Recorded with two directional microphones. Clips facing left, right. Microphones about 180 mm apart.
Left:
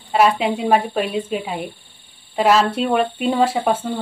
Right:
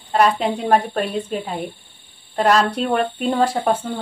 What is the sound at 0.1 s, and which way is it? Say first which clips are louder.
Speech: left 1 dB; 5° left (ahead or behind).